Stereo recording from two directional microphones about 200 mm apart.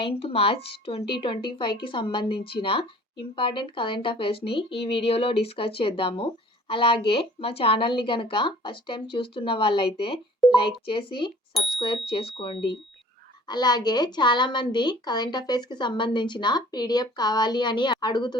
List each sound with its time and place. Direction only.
0.0 s speech: 30° left (ahead or behind)
10.4 s a sound: centre (ahead or behind)
10.8 s speech: 25° left (ahead or behind)